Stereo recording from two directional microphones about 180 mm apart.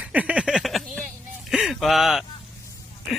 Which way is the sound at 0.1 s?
5° right (ahead or behind).